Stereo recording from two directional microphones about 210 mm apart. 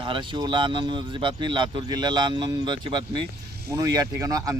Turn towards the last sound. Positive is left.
turn(degrees=-15)  # may be behind; listen again after turning